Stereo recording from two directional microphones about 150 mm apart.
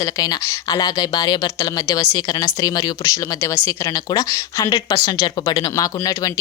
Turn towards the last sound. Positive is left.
turn(degrees=25)  # may be behind; listen again after turning